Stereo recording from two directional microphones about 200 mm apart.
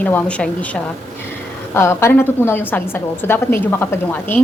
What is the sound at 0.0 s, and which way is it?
A woman's voice, 5° left (ahead or behind).